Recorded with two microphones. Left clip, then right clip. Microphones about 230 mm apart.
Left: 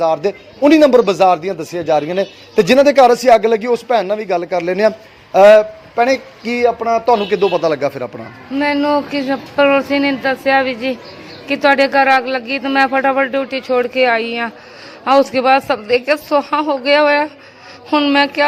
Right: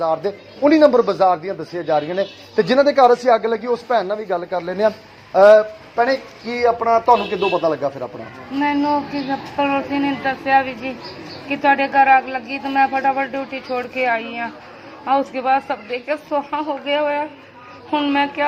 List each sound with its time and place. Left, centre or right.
0.0 s a man's voice: left